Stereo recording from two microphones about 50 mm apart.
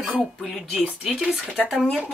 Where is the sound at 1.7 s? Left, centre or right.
Centre.